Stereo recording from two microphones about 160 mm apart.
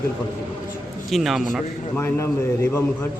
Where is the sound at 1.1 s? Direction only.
Centre (ahead or behind).